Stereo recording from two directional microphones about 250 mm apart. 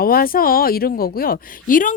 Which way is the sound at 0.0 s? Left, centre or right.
Left.